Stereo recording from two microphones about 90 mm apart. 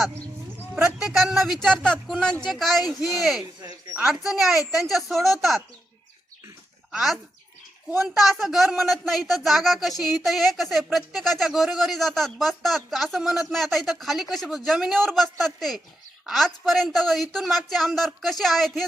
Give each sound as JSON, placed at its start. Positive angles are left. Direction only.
{"t": 0.8, "sound": "a man's voice", "side_deg": -5}
{"t": 3.4, "sound": "a sound", "side_deg": -50}
{"t": 4.0, "sound": "a man's voice", "side_deg": -5}
{"t": 7.9, "sound": "a man's voice", "side_deg": -5}